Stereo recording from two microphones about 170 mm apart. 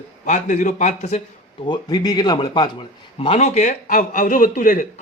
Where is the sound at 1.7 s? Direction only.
25° left (ahead or behind).